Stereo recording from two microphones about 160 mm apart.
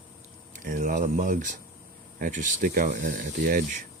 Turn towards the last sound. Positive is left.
turn(degrees=-60)  # may be behind; listen again after turning